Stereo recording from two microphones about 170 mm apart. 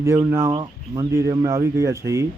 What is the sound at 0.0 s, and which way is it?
Speech, 15° right (ahead or behind).